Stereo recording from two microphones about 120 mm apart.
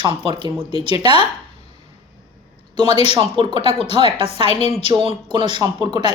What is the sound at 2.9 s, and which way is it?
Speech, 55° left (ahead or behind).